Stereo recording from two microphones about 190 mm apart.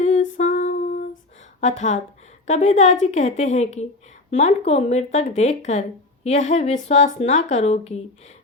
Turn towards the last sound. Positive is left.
turn(degrees=35)  # may be behind; listen again after turning